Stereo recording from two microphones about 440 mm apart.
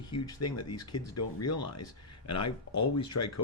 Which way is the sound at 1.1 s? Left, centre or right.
Left.